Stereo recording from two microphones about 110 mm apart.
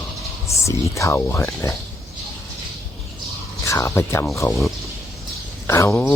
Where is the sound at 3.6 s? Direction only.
25° left (ahead or behind).